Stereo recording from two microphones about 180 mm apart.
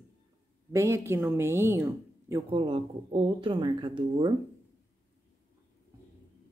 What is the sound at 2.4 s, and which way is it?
Speech, 30° right (ahead or behind).